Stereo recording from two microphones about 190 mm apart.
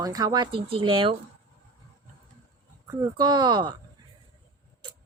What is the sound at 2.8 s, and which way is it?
Speech, 20° right (ahead or behind).